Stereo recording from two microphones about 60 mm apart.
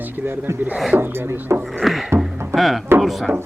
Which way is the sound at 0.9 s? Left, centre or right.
Right.